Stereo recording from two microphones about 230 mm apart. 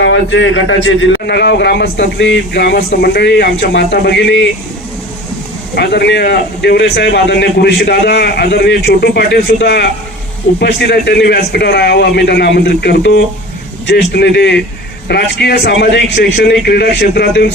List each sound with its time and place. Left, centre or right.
0.0 s a man's voice: left
5.7 s a man's voice: left